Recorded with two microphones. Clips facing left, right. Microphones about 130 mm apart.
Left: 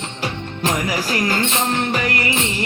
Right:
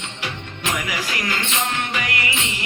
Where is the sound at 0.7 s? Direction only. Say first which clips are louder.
Left 5 dB; 40° left (ahead or behind).